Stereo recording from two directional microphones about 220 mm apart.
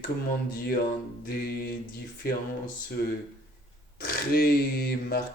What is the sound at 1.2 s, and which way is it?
Speech, 45° left (ahead or behind).